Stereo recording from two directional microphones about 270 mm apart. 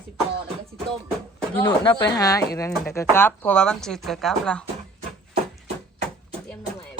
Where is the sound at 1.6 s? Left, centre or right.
Centre.